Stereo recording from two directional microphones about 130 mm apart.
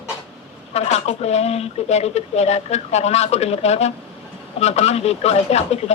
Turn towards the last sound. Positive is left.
turn(degrees=55)  # may be behind; listen again after turning